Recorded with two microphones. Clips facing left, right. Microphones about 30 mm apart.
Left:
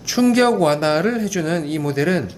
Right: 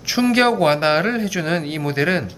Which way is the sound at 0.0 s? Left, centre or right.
Right.